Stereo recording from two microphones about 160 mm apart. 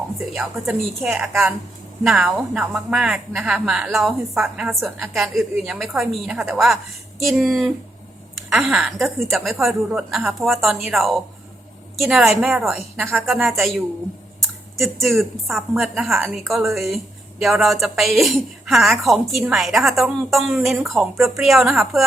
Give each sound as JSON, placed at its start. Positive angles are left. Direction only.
{"t": 0.3, "sound": "a woman's voice", "side_deg": 0}
{"t": 15.0, "sound": "a woman's voice", "side_deg": 0}